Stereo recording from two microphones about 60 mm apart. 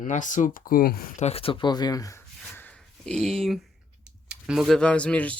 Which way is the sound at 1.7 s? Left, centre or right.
Left.